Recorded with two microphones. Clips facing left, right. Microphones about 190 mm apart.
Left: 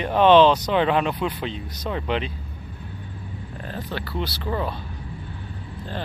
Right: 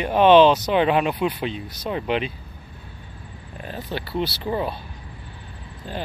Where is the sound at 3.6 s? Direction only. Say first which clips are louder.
Right 2 dB; 15° right (ahead or behind).